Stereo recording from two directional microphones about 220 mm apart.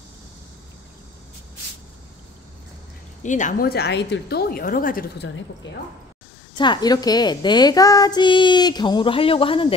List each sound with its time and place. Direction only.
3.2 s a woman's voice: 35° left (ahead or behind)
5.6 s a woman's voice: 55° left (ahead or behind)
6.6 s speech: 20° left (ahead or behind)